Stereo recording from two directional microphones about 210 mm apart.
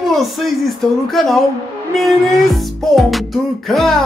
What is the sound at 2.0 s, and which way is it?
Music, centre (ahead or behind).